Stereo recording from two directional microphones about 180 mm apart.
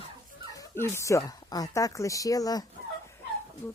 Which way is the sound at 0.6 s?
15° left (ahead or behind).